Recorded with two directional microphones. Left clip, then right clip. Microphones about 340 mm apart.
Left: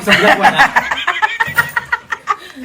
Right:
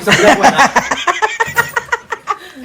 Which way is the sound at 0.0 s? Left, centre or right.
Right.